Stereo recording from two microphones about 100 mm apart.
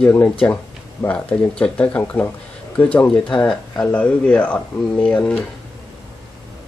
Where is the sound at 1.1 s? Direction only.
10° left (ahead or behind).